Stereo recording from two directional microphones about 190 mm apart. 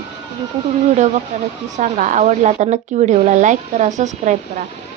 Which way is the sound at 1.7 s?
40° right (ahead or behind).